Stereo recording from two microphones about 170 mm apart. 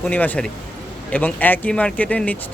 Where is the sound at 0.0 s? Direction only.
10° left (ahead or behind).